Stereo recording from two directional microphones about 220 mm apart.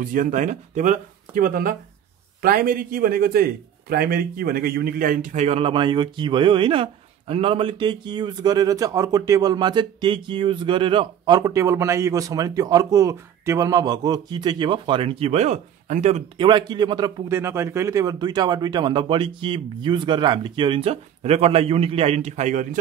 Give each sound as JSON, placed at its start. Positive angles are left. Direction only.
{"t": 0.0, "sound": "a man's voice", "side_deg": -35}